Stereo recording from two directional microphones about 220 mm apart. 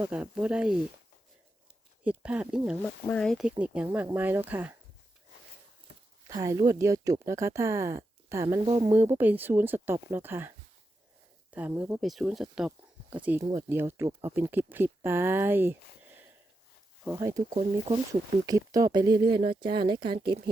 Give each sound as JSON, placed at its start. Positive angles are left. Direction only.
{"t": 0.0, "sound": "speech", "side_deg": -5}
{"t": 2.0, "sound": "speech", "side_deg": -5}
{"t": 6.2, "sound": "speech", "side_deg": -15}
{"t": 11.5, "sound": "speech", "side_deg": -5}
{"t": 17.2, "sound": "speech", "side_deg": -15}
{"t": 17.5, "sound": "speech", "side_deg": -30}
{"t": 17.9, "sound": "speech", "side_deg": -15}